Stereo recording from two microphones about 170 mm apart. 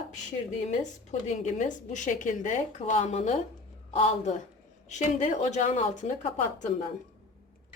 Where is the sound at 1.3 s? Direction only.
45° left (ahead or behind).